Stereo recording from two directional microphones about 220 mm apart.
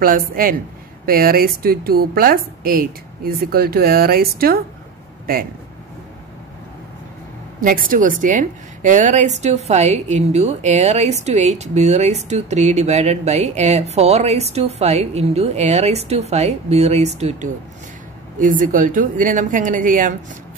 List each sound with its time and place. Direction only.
0.3 s a woman's voice: 40° right (ahead or behind)
7.6 s a woman's voice: 40° right (ahead or behind)